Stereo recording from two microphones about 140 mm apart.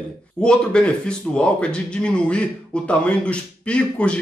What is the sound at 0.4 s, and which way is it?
Speech, 5° left (ahead or behind).